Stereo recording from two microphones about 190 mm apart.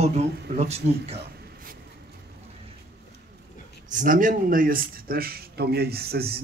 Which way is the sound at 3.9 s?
45° right (ahead or behind).